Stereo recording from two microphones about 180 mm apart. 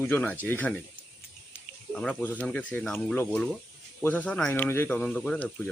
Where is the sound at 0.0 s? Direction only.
10° left (ahead or behind).